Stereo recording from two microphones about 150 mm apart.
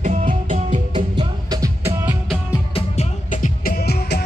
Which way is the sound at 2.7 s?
50° left (ahead or behind).